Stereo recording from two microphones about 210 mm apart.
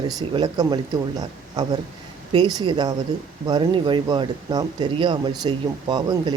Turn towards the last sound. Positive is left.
turn(degrees=-20)  # may be behind; listen again after turning